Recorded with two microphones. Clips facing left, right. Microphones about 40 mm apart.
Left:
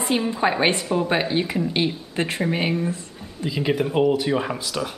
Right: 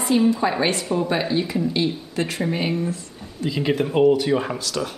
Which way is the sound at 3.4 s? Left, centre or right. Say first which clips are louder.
Right 1 dB; centre.